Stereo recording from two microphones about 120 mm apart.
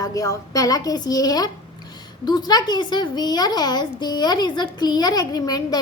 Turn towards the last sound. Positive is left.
turn(degrees=35)  # may be behind; listen again after turning